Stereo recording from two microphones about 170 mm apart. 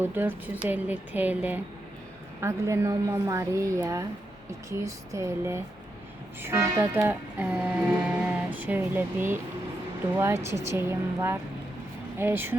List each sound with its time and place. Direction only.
0.0 s music: 10° right (ahead or behind)